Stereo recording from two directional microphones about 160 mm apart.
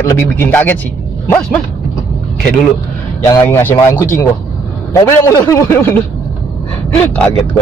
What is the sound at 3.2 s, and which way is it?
Speech, 15° left (ahead or behind).